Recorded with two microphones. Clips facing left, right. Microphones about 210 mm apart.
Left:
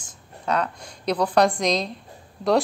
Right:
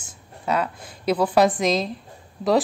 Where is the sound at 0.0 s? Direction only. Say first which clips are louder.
Right 1 dB; 5° right (ahead or behind).